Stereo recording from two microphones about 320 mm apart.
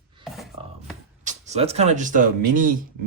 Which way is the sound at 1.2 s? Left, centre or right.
Right.